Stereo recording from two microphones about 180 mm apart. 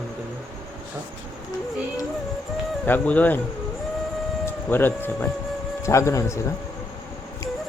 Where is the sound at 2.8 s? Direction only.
10° left (ahead or behind).